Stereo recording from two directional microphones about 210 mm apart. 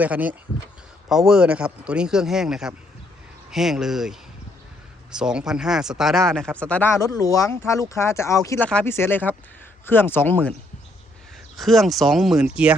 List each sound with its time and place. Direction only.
0.0 s speech: 5° right (ahead or behind)
7.0 s speech: 15° left (ahead or behind)
11.5 s speech: centre (ahead or behind)